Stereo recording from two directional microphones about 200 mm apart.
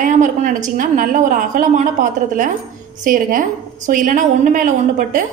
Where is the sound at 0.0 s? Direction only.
40° right (ahead or behind).